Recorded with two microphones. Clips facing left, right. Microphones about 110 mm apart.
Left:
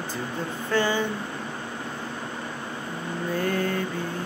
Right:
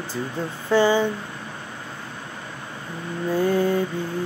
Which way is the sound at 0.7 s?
15° right (ahead or behind).